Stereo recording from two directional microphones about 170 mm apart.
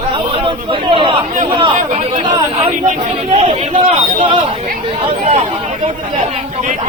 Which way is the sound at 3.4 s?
40° right (ahead or behind).